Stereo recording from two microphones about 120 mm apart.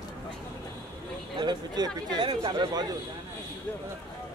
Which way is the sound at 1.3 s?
40° right (ahead or behind).